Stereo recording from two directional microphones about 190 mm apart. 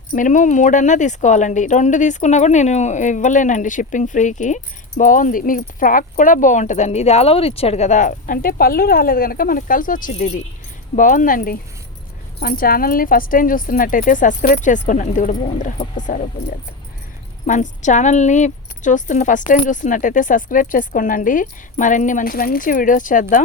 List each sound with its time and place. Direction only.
0.1 s speech: 45° left (ahead or behind)
17.4 s speech: 40° left (ahead or behind)